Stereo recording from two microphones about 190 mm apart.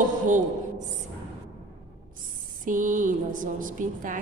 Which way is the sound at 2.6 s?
45° right (ahead or behind).